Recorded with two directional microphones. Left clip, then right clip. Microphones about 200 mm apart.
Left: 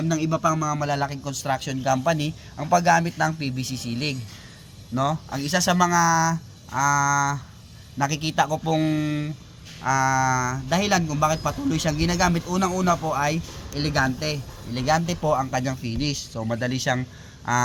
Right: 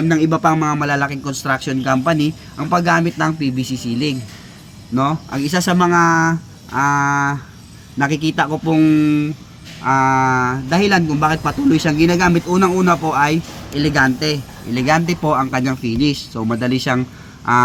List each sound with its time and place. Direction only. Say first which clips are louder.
0.2 s a man's voice: right 6 dB; 5° left (ahead or behind)